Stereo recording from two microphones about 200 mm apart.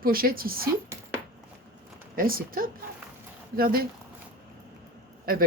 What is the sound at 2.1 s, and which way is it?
Speech, 45° right (ahead or behind).